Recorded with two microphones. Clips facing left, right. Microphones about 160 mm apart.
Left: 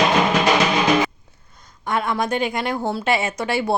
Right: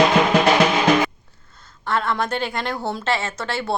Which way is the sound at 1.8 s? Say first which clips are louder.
Left 1 dB; 10° left (ahead or behind).